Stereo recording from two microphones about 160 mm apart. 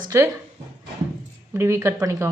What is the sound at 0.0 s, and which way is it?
Speech, 20° right (ahead or behind).